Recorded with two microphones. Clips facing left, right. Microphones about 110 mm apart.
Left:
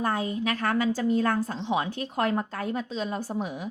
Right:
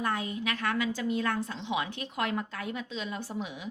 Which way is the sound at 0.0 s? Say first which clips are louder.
Left 4 dB; 35° left (ahead or behind).